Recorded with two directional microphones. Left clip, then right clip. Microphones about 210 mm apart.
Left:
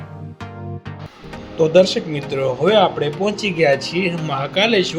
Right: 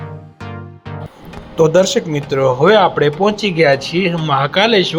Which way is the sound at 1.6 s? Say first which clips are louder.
Right 2 dB; 20° right (ahead or behind).